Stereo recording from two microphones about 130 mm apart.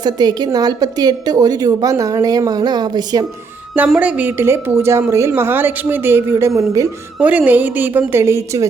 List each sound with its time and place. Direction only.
0.0 s a woman's voice: 30° right (ahead or behind)
3.8 s a woman's voice: 10° right (ahead or behind)
7.2 s a woman's voice: 10° right (ahead or behind)